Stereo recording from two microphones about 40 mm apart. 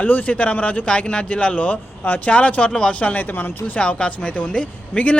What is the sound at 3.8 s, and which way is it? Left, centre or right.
Speech, left.